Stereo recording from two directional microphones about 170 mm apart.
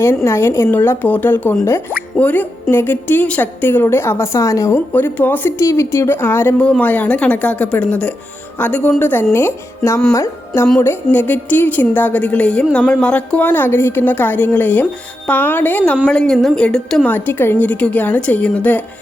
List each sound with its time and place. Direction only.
0.0 s a woman's voice: 15° left (ahead or behind)
10.1 s music: 15° left (ahead or behind)
10.8 s a woman's voice: 10° left (ahead or behind)